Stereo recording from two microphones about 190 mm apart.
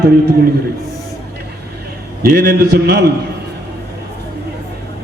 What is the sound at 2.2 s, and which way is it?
Speech, 55° right (ahead or behind).